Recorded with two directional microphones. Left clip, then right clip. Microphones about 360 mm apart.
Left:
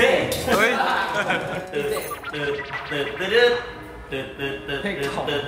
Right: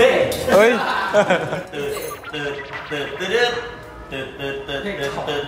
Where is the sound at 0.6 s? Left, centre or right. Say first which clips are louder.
Right 3 dB; centre.